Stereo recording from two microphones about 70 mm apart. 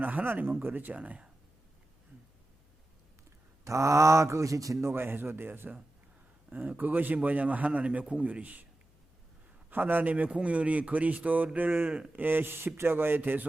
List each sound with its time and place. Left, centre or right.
0.0 s speech: right
3.6 s speech: right
4.9 s speech: right
9.6 s speech: right